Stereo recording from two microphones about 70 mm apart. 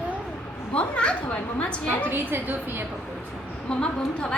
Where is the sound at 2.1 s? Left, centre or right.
Right.